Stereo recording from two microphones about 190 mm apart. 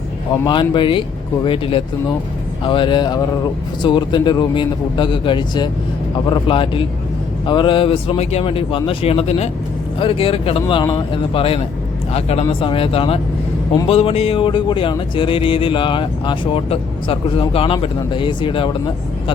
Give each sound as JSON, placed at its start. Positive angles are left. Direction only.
{"t": 0.4, "sound": "speech", "side_deg": 25}